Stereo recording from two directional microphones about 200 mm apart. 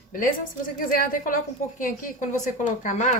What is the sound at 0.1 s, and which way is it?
A woman's voice, 45° left (ahead or behind).